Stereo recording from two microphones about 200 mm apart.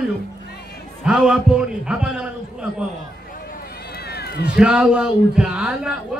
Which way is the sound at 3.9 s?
55° left (ahead or behind).